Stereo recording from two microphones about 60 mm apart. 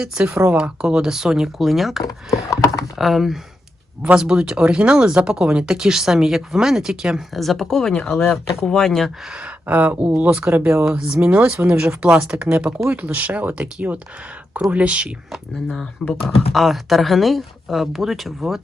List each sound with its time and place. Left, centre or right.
0.0 s speech: centre
2.0 s computer keyboard: left
3.0 s speech: centre
4.0 s speech: centre
7.3 s speech: centre
9.3 s speech: right
10.8 s speech: centre
14.7 s speech: right
15.5 s speech: centre
16.2 s speech: centre